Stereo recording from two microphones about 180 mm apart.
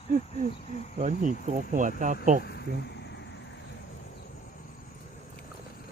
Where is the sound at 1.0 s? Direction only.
40° right (ahead or behind).